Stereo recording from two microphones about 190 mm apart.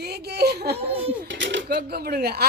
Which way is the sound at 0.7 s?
30° right (ahead or behind).